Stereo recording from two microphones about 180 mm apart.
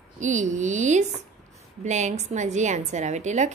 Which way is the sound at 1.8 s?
40° right (ahead or behind).